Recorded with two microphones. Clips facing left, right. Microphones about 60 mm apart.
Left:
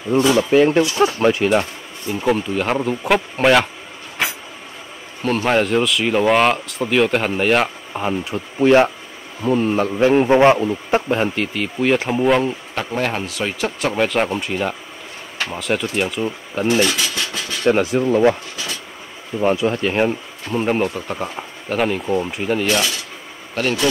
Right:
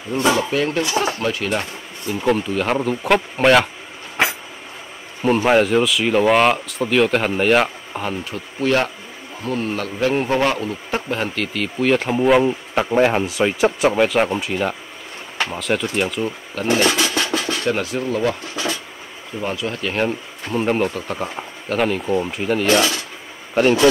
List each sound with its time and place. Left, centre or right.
0.4 s speech: left
1.6 s speech: centre
5.2 s speech: centre
8.0 s a man's voice: centre
13.9 s speech: centre
16.6 s a sound: right
17.6 s speech: left
19.4 s speech: left
20.5 s speech: centre
23.5 s speech: centre